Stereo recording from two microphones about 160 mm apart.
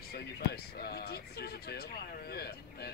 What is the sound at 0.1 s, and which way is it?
Speech, 75° left (ahead or behind).